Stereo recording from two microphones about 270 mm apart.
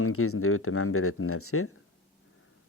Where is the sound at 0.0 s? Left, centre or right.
Left.